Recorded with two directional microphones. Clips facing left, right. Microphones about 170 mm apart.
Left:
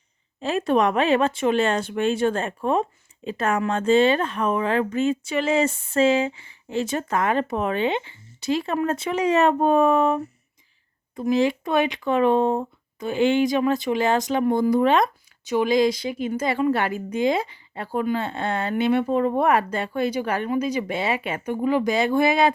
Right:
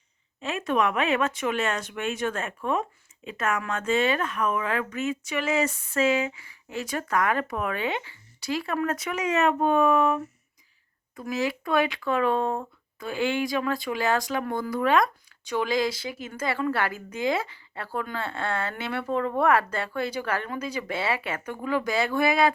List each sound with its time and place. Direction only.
0.3 s a woman's voice: 35° left (ahead or behind)